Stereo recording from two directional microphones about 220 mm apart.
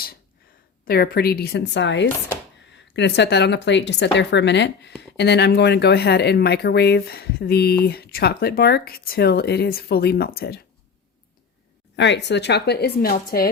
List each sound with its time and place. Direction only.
0.9 s speech: 45° left (ahead or behind)
11.9 s speech: 55° left (ahead or behind)